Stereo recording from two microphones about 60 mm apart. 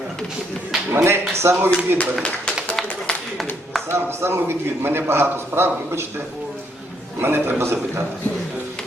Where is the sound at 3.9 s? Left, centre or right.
Right.